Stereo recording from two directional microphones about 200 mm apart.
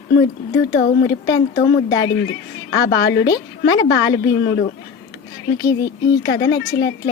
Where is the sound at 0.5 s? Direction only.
55° left (ahead or behind).